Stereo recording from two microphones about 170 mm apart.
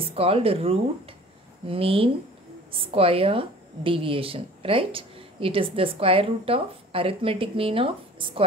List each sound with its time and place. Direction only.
0.0 s a woman's voice: 35° right (ahead or behind)